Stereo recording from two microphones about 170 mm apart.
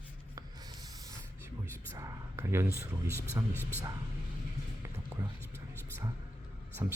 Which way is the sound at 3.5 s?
10° left (ahead or behind).